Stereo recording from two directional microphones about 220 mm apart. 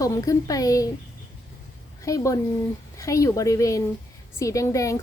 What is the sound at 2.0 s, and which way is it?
Speech, 15° left (ahead or behind).